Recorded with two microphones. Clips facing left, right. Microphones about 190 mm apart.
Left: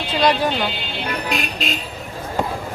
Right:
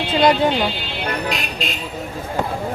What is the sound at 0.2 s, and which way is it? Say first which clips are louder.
Speech: right 3 dB; 25° right (ahead or behind).